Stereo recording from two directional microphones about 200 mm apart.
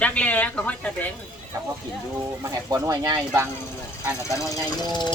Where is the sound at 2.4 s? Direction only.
15° right (ahead or behind).